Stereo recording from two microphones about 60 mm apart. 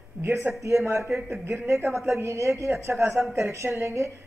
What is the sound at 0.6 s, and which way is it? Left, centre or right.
Speech, right.